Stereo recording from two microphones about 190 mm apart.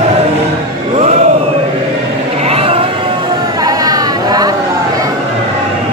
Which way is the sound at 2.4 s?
30° right (ahead or behind).